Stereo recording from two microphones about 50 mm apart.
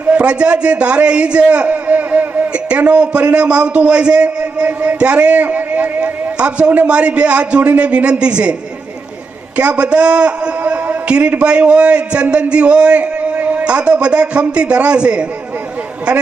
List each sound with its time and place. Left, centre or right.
0.1 s a man's voice: right
1.7 s a sound: right
2.5 s a man's voice: right
9.6 s a man's voice: right